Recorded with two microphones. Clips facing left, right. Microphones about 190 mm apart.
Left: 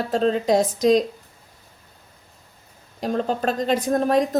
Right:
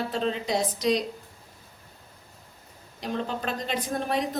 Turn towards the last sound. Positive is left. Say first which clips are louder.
# left 9 dB
turn(degrees=45)  # may be behind; listen again after turning